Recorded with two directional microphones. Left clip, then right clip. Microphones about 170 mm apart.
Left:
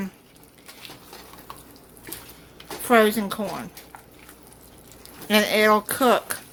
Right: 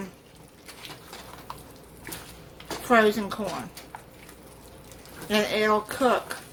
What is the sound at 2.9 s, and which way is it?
Speech, 45° left (ahead or behind).